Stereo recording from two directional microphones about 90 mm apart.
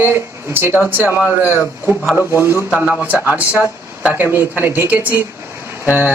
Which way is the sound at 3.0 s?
15° right (ahead or behind).